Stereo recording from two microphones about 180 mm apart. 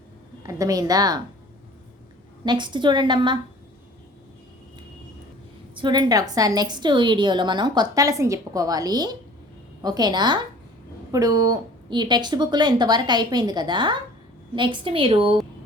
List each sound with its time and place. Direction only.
0.4 s a woman's voice: 20° right (ahead or behind)
2.4 s a woman's voice: 25° right (ahead or behind)
5.7 s a woman's voice: 25° right (ahead or behind)